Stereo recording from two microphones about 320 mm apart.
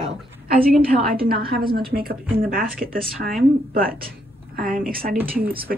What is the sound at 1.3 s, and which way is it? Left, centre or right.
Speech, right.